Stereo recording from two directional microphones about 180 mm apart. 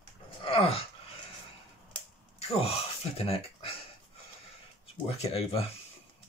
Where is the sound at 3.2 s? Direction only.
30° left (ahead or behind).